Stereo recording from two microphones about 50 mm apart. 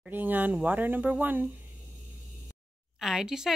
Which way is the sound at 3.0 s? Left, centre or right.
Centre.